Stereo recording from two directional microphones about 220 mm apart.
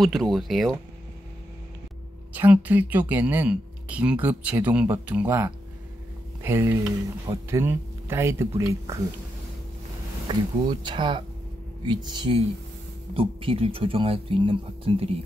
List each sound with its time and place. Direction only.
0.0 s speech: centre (ahead or behind)
2.3 s speech: 10° right (ahead or behind)
10.2 s speech: 20° right (ahead or behind)